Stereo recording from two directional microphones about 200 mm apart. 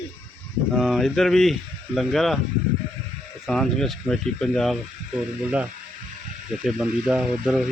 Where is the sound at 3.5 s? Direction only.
Centre (ahead or behind).